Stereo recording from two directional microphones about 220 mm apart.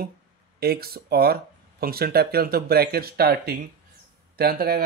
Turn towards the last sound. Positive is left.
turn(degrees=-45)  # may be behind; listen again after turning